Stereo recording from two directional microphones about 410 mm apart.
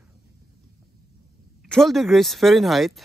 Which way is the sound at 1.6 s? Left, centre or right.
Centre.